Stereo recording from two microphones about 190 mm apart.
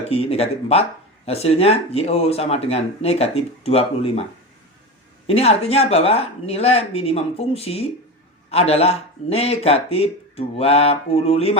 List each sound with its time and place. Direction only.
0.1 s speech: 30° left (ahead or behind)
5.2 s speech: 30° left (ahead or behind)